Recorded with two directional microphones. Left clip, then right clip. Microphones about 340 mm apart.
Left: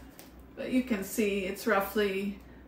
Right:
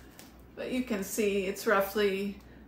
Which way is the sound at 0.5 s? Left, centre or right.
Centre.